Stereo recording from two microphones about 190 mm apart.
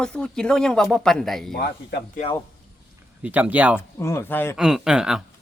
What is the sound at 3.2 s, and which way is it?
Speech, 10° right (ahead or behind).